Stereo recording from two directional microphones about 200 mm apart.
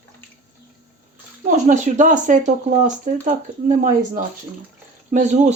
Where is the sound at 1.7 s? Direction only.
40° right (ahead or behind).